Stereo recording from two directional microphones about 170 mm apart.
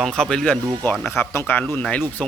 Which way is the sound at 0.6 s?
20° right (ahead or behind).